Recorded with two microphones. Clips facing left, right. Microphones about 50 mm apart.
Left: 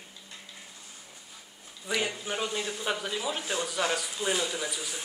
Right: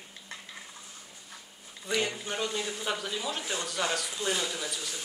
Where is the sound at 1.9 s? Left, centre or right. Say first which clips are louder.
Even; centre.